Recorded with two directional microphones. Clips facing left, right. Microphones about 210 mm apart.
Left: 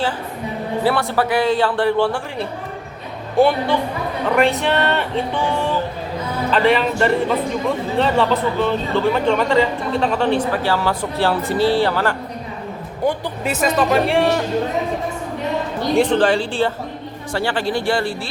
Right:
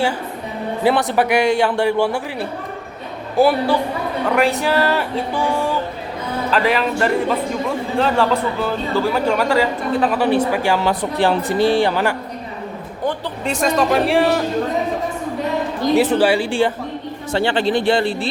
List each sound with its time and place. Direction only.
0.9 s speech: 15° right (ahead or behind)
13.1 s speech: 5° left (ahead or behind)
16.0 s speech: 5° right (ahead or behind)